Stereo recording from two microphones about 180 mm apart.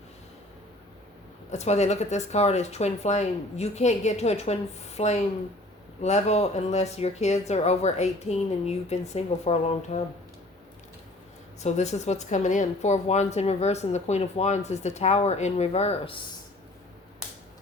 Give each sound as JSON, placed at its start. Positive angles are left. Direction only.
{"t": 1.5, "sound": "speech", "side_deg": 40}
{"t": 11.6, "sound": "speech", "side_deg": 40}